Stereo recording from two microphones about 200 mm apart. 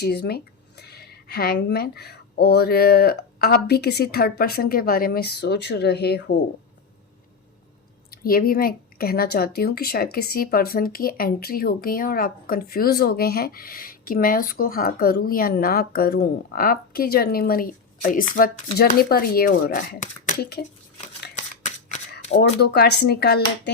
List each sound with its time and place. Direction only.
0.0 s a woman's voice: 55° left (ahead or behind)
8.1 s a woman's voice: 50° left (ahead or behind)
21.3 s a sound: 35° left (ahead or behind)
22.4 s speech: 55° left (ahead or behind)